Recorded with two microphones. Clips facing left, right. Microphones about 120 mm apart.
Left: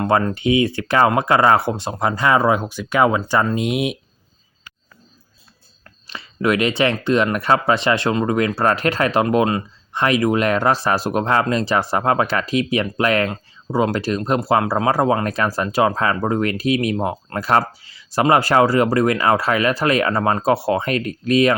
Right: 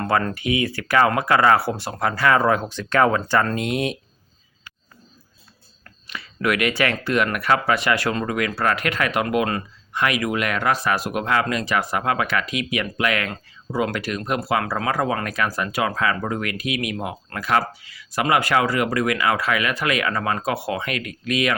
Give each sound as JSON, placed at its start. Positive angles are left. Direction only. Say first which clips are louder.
{"t": 0.0, "sound": "speech", "louder": "left 4 dB", "side_deg": 20}
{"t": 5.8, "sound": "speech", "louder": "left 1 dB", "side_deg": 25}